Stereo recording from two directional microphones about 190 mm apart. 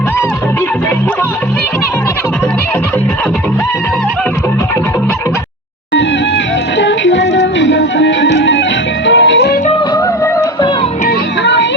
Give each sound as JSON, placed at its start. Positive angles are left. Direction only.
{"t": 6.7, "sound": "music", "side_deg": 75}